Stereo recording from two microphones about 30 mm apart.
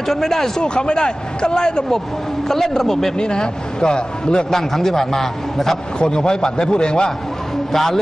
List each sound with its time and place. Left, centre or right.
0.1 s a man's voice: centre
0.6 s a man's voice: left
2.4 s a man's voice: centre
3.2 s a man's voice: left
4.5 s a man's voice: centre
5.9 s a man's voice: left
7.7 s a man's voice: centre